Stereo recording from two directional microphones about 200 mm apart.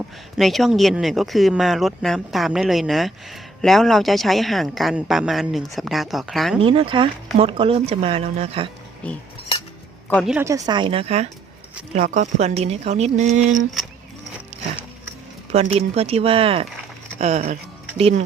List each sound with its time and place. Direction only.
0.3 s speech: centre (ahead or behind)
6.6 s speech: 25° right (ahead or behind)
9.0 s cutlery: 5° left (ahead or behind)
10.2 s speech: 10° right (ahead or behind); by 13.7 s 40° right (ahead or behind)
15.5 s speech: 30° right (ahead or behind)